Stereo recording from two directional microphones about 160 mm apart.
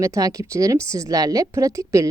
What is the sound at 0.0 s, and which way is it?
A woman's voice, 20° right (ahead or behind).